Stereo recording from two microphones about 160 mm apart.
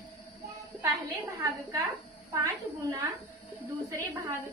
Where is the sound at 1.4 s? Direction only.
15° right (ahead or behind).